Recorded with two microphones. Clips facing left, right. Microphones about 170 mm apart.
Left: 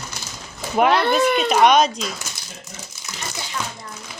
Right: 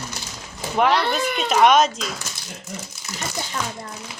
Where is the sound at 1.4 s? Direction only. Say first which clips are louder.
Right 2 dB; centre (ahead or behind).